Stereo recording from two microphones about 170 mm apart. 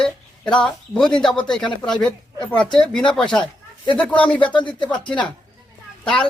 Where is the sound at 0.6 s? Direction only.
5° left (ahead or behind).